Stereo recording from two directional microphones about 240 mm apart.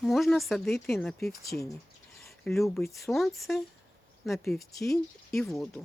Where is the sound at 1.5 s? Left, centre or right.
Left.